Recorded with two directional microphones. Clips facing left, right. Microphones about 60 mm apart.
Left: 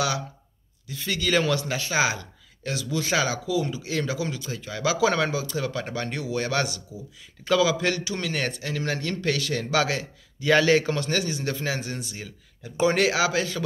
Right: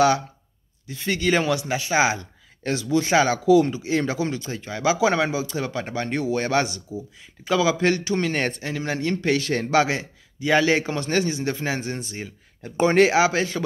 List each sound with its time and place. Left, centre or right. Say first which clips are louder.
0.8 s a man's voice: right 4 dB; right
8.7 s a man's voice: right 3 dB; right